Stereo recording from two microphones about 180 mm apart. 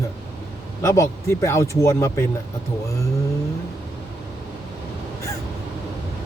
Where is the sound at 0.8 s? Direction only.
15° left (ahead or behind).